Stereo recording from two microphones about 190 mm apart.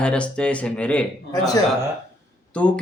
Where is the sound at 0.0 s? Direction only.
5° left (ahead or behind).